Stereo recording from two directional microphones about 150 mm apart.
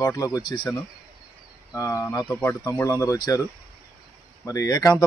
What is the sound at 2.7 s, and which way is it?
Speech, 20° left (ahead or behind).